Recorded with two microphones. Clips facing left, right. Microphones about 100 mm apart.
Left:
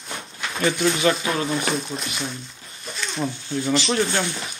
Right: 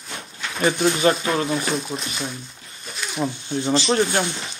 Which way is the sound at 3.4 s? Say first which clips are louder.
Right 2 dB; 25° right (ahead or behind).